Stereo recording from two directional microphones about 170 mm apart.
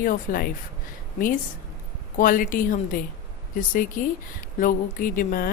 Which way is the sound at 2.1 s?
55° left (ahead or behind).